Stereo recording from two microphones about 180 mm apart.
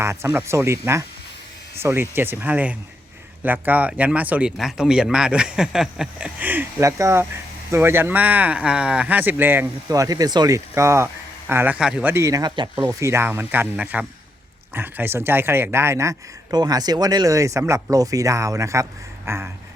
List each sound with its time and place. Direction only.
0.0 s speech: 15° right (ahead or behind)